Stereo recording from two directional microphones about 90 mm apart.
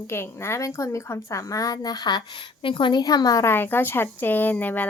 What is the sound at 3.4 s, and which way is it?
A woman's voice, 25° left (ahead or behind).